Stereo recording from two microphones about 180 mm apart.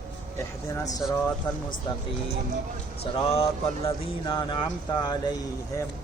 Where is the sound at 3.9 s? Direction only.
25° left (ahead or behind).